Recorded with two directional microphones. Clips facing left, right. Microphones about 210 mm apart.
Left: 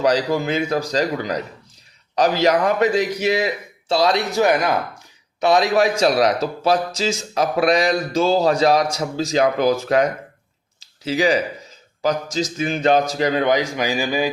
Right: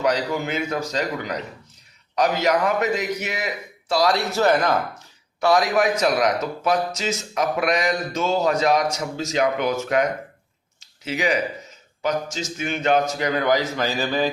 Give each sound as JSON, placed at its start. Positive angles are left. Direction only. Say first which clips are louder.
{"t": 0.0, "sound": "a man's voice", "louder": "left 4 dB", "side_deg": 35}
{"t": 10.8, "sound": "a sound", "louder": "left 6 dB", "side_deg": 35}
{"t": 12.0, "sound": "a man's voice", "louder": "left 4 dB", "side_deg": 35}